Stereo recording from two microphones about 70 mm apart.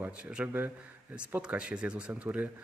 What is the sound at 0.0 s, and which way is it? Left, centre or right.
A man's voice, centre.